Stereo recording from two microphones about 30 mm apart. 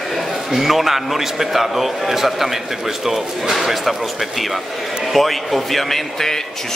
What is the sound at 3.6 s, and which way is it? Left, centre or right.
A man's voice, centre.